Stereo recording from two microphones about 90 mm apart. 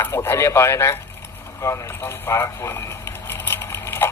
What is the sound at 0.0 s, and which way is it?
Speech, 25° left (ahead or behind).